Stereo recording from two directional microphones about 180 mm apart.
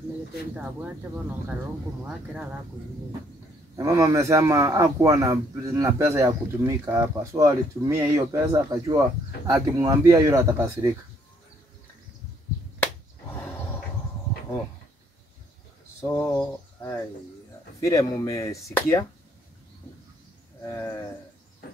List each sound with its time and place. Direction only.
3.7 s a man's voice: 15° right (ahead or behind)
16.0 s speech: 15° left (ahead or behind)